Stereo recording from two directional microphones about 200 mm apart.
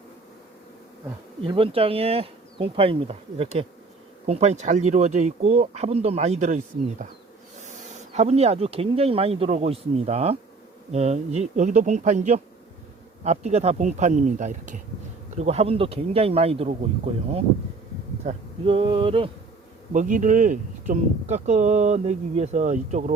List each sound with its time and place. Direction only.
1.5 s speech: 25° right (ahead or behind)
7.6 s speech: 35° right (ahead or behind)
18.3 s speech: 25° right (ahead or behind)
19.9 s speech: 40° right (ahead or behind)